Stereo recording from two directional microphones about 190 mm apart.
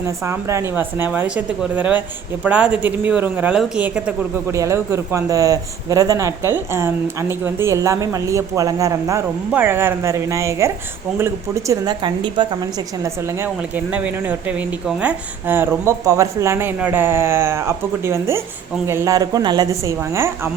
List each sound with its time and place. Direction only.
0.3 s a woman's voice: 15° right (ahead or behind)
13.0 s speech: 10° right (ahead or behind)